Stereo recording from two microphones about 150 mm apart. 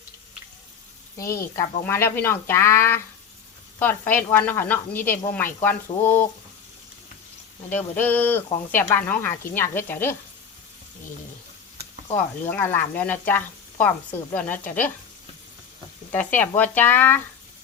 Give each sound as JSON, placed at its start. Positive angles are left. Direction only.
{"t": 1.5, "sound": "speech", "side_deg": 15}
{"t": 7.7, "sound": "speech", "side_deg": 10}
{"t": 12.1, "sound": "speech", "side_deg": 10}
{"t": 16.1, "sound": "speech", "side_deg": 10}